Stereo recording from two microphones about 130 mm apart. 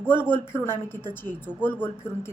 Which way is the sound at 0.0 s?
15° left (ahead or behind).